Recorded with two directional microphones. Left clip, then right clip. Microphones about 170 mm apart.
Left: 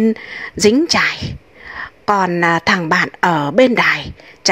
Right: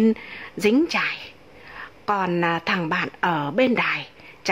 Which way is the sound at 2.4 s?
30° left (ahead or behind).